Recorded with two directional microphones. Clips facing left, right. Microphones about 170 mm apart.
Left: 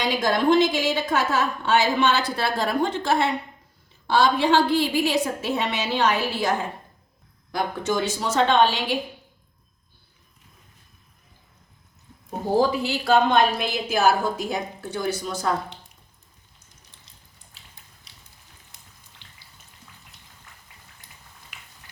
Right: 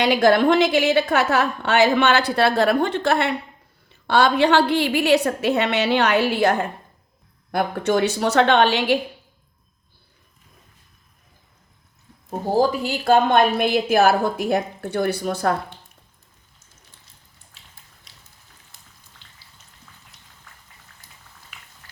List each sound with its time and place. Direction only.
0.0 s a woman's voice: 65° right (ahead or behind)
12.5 s a woman's voice: 45° right (ahead or behind)
18.7 s raindrop: 20° left (ahead or behind)